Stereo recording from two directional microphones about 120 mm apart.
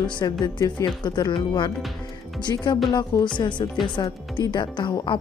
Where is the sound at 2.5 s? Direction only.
25° left (ahead or behind).